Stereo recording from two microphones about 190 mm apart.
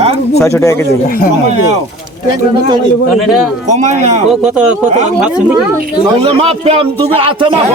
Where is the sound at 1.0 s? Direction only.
50° left (ahead or behind).